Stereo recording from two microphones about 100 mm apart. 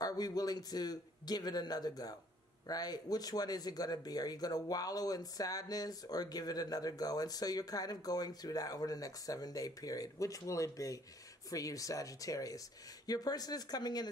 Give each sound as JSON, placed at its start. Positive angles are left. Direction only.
{"t": 0.0, "sound": "speech", "side_deg": 40}